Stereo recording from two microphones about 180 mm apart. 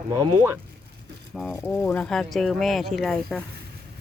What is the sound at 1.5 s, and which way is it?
Speech, 10° left (ahead or behind).